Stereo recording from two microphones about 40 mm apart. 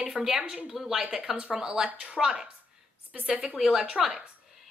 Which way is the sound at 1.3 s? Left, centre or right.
Right.